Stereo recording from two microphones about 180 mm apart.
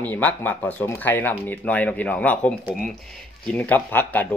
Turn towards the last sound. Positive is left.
turn(degrees=10)  # may be behind; listen again after turning